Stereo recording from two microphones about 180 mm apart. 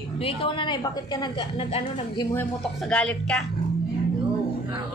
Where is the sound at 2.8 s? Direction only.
5° left (ahead or behind).